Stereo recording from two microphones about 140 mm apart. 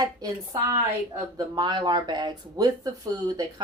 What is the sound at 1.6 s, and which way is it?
Speech, 30° right (ahead or behind).